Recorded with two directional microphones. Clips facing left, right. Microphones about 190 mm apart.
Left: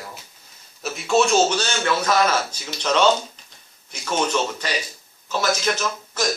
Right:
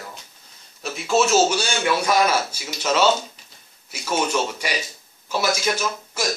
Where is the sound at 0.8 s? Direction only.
Centre (ahead or behind).